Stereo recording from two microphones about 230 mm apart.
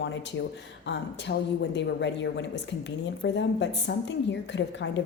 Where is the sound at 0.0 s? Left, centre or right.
Left.